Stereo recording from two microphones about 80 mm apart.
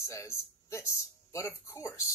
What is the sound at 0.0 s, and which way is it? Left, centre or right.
Speech, left.